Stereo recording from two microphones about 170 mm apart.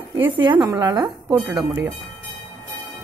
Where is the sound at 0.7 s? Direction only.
25° right (ahead or behind).